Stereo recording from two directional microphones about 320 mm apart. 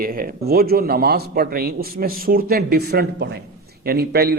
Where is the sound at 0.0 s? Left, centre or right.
Right.